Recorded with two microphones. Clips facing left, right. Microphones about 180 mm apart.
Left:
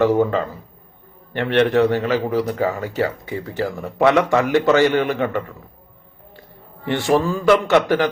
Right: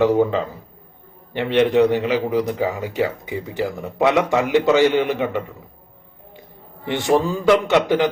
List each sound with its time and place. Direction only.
0.2 s speech: 10° right (ahead or behind)
6.8 s speech: 15° right (ahead or behind)